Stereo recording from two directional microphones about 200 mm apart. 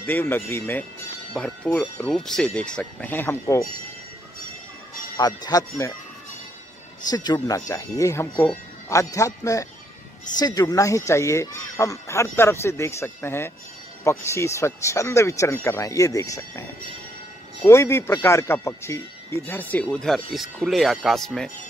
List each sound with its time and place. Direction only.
0.0 s speech: 10° left (ahead or behind)
5.1 s speech: 20° left (ahead or behind)
7.1 s speech: 20° left (ahead or behind)
17.6 s speech: 15° left (ahead or behind)